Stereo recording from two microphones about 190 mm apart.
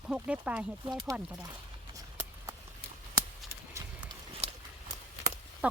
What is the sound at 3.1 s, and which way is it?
Clip-clop, 15° right (ahead or behind).